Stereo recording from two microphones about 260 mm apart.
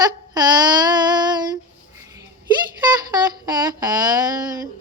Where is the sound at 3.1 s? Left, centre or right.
Centre.